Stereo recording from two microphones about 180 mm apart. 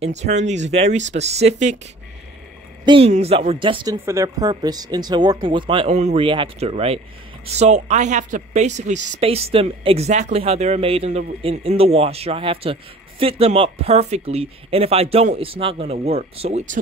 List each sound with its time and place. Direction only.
0.0 s speech: 40° right (ahead or behind)
2.8 s speech: 25° right (ahead or behind)